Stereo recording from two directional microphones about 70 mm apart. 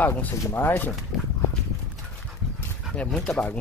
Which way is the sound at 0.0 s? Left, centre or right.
Left.